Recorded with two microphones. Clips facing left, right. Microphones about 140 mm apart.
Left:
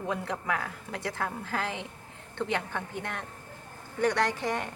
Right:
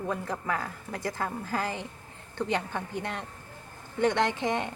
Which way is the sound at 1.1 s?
10° right (ahead or behind).